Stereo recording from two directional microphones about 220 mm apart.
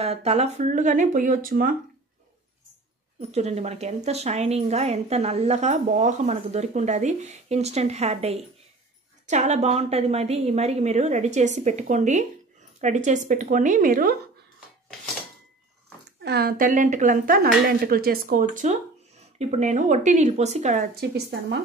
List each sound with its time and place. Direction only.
0.0 s a woman's voice: 30° right (ahead or behind)
3.2 s a woman's voice: 30° right (ahead or behind)
16.2 s a woman's voice: 50° right (ahead or behind)